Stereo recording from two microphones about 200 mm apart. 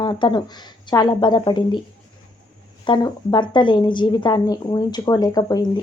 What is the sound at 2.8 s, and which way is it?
Speech, 20° left (ahead or behind).